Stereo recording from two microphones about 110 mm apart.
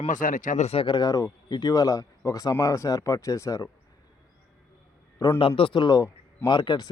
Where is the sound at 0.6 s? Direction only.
70° left (ahead or behind).